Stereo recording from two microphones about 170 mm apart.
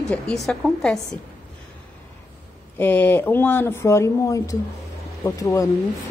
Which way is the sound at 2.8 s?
10° left (ahead or behind).